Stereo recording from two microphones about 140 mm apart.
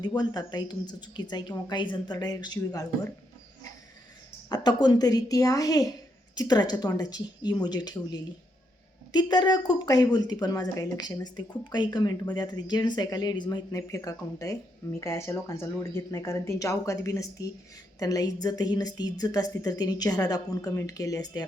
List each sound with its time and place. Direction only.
0.0 s a woman's voice: 30° left (ahead or behind)
4.4 s a woman's voice: 30° left (ahead or behind)